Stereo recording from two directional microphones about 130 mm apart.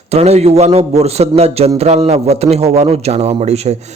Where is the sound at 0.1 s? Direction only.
55° right (ahead or behind).